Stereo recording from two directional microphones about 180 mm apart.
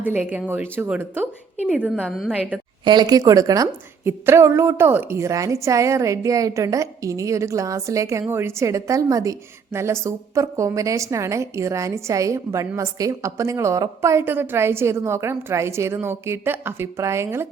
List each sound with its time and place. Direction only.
0.0 s a woman's voice: 10° right (ahead or behind)
2.8 s a woman's voice: 25° right (ahead or behind)